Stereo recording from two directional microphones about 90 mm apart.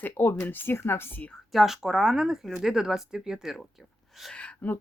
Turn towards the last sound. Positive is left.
turn(degrees=15)  # may be behind; listen again after turning